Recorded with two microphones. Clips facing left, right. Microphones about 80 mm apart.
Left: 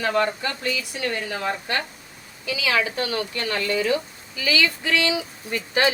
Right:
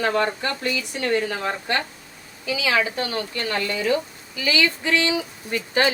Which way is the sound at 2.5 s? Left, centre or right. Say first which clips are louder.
Right 1 dB; right.